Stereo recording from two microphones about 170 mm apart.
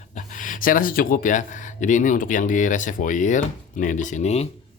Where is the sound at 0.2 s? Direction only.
50° left (ahead or behind).